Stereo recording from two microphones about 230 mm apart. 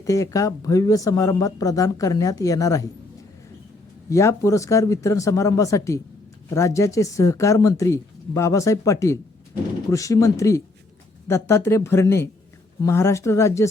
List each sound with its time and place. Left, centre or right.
0.0 s speech: centre
4.1 s speech: centre